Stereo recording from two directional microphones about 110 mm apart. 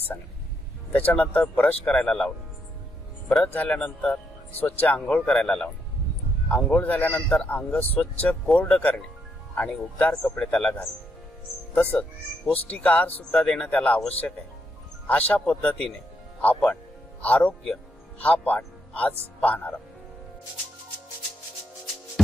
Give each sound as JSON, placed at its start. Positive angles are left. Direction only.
{"t": 0.9, "sound": "speech", "side_deg": 10}
{"t": 3.5, "sound": "speech", "side_deg": 15}